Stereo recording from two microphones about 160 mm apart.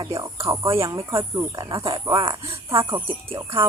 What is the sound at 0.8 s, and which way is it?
Speech, 20° right (ahead or behind).